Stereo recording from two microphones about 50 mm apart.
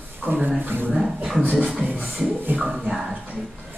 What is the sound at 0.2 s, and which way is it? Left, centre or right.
Speech, right.